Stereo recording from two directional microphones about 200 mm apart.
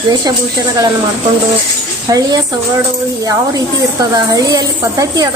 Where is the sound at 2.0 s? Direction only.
20° right (ahead or behind).